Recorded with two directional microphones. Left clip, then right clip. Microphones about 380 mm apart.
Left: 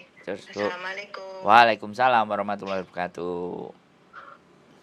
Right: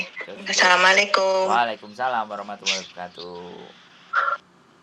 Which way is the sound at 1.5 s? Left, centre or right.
Left.